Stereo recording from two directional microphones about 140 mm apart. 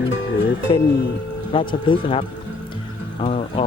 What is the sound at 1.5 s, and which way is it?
Speech, 40° left (ahead or behind).